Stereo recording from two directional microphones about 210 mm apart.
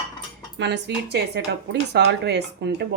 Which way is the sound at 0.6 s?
55° right (ahead or behind).